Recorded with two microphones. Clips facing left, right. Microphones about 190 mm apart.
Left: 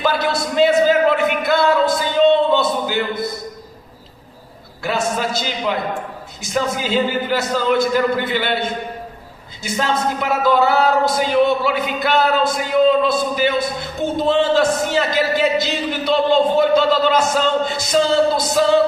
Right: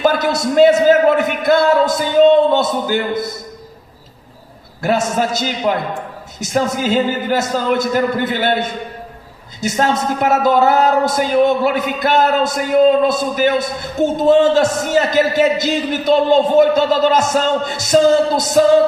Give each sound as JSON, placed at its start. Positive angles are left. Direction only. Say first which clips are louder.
{"t": 0.0, "sound": "a sound", "louder": "right 4 dB", "side_deg": -45}
{"t": 4.8, "sound": "a man's voice", "louder": "right 4 dB", "side_deg": -45}
{"t": 9.6, "sound": "a man's voice", "louder": "right 4 dB", "side_deg": -45}